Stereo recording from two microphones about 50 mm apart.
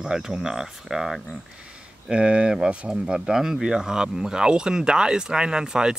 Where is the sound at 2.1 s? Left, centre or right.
Right.